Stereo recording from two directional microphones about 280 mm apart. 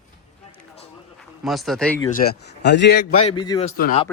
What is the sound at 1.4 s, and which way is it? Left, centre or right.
Speech, centre.